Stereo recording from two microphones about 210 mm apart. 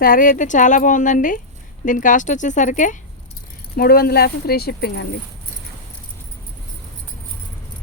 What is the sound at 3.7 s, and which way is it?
Speech, 45° left (ahead or behind).